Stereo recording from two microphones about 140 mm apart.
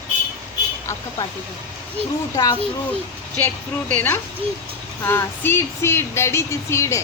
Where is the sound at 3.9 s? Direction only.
15° left (ahead or behind).